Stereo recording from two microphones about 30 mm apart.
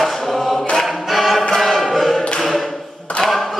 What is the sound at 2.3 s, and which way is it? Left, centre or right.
Tap, centre.